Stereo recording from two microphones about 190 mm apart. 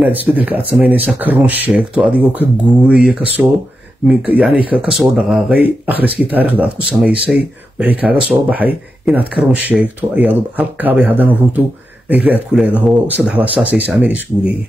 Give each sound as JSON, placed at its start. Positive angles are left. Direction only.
{"t": 0.2, "sound": "speech", "side_deg": -10}